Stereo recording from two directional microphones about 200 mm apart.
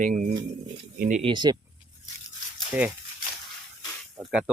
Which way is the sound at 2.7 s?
5° right (ahead or behind).